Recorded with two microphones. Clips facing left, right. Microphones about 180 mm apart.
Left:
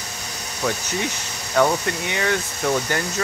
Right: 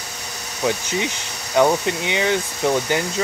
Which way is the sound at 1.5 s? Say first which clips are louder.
Right 2 dB; 20° right (ahead or behind).